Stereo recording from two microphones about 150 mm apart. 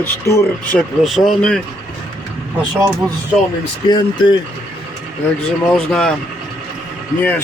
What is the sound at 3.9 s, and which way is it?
Speech, 30° left (ahead or behind).